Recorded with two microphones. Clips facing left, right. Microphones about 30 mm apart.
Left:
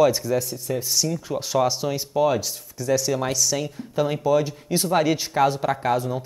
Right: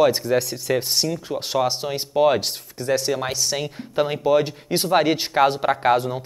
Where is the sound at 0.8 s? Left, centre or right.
Right.